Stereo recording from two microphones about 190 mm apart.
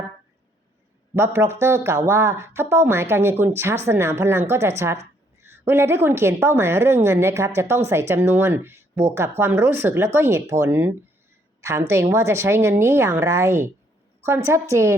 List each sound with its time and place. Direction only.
1.1 s speech: 15° right (ahead or behind)